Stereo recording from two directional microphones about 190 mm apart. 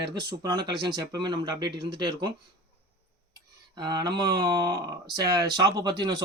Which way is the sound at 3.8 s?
20° right (ahead or behind).